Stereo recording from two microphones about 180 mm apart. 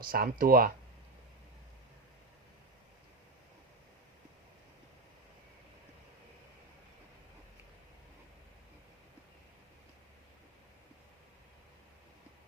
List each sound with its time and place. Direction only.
0.0 s speech: 55° right (ahead or behind)